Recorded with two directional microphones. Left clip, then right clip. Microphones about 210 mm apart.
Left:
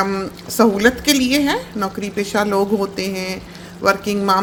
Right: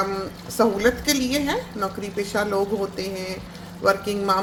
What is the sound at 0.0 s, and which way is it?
Speech, 40° left (ahead or behind).